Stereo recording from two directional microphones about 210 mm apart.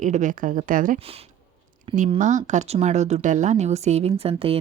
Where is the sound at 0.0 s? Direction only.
35° right (ahead or behind).